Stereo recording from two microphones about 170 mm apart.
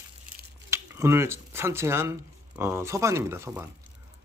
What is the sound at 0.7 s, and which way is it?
Speech, 15° right (ahead or behind).